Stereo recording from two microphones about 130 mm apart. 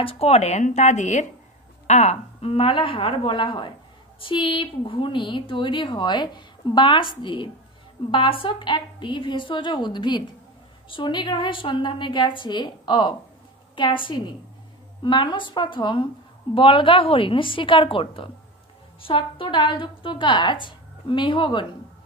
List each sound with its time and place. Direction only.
0.0 s a woman's voice: 50° left (ahead or behind)